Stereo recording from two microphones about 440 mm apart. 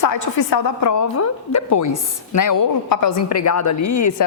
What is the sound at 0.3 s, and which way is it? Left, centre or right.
A woman's voice, left.